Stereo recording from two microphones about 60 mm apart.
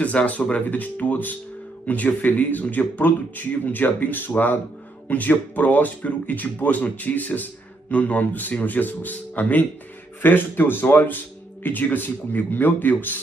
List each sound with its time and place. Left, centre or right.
0.0 s speech: left